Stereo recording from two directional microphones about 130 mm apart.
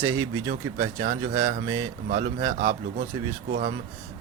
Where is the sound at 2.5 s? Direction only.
90° right.